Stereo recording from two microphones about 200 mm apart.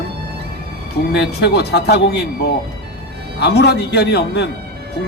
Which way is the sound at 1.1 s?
55° left (ahead or behind).